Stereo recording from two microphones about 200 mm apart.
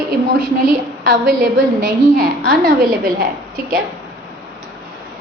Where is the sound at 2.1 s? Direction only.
50° right (ahead or behind).